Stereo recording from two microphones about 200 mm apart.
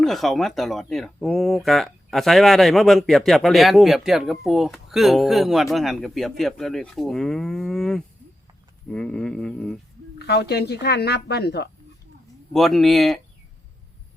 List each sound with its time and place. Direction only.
0.0 s speech: centre (ahead or behind)
10.2 s a woman's voice: 55° left (ahead or behind)
12.5 s speech: centre (ahead or behind)